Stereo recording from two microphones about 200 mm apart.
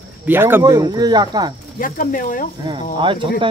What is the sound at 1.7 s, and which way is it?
Speech, 45° left (ahead or behind).